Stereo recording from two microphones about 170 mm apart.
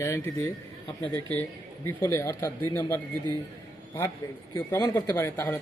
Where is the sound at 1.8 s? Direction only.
15° left (ahead or behind).